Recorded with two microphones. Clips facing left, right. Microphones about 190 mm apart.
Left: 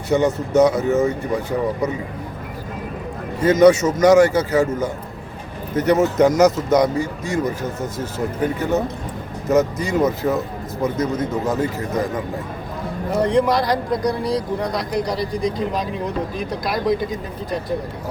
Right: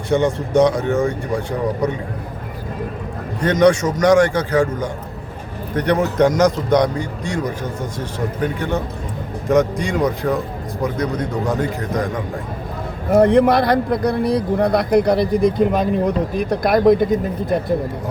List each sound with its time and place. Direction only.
0.1 s a man's voice: 5° left (ahead or behind)
3.4 s a man's voice: 5° left (ahead or behind)
13.1 s speech: 60° right (ahead or behind)